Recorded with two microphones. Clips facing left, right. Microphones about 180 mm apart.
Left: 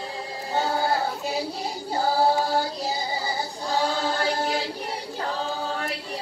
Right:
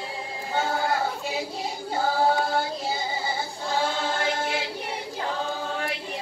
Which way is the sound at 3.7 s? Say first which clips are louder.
Left 2 dB; 40° left (ahead or behind).